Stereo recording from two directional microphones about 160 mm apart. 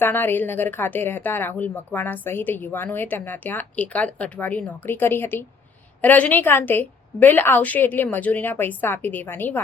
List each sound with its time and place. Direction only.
0.0 s speech: 15° left (ahead or behind)